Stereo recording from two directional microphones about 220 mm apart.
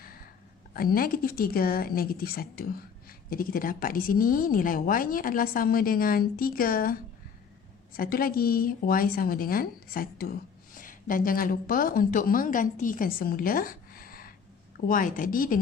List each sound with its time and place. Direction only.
0.7 s a woman's voice: 40° left (ahead or behind)
7.9 s a woman's voice: 40° left (ahead or behind)